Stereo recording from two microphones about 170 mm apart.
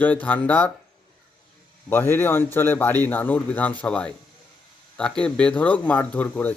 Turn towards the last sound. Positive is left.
turn(degrees=10)  # may be behind; listen again after turning